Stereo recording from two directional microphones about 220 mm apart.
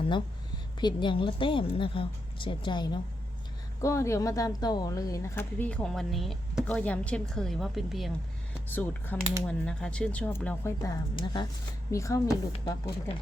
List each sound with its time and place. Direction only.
0.8 s a woman's voice: 20° left (ahead or behind)